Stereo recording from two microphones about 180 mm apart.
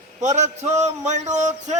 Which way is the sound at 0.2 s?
40° right (ahead or behind).